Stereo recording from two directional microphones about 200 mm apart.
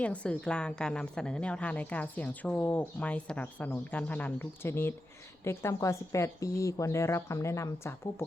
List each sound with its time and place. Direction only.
0.0 s a woman's voice: 5° left (ahead or behind)